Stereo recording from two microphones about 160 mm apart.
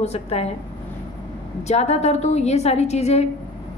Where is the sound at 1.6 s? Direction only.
45° left (ahead or behind).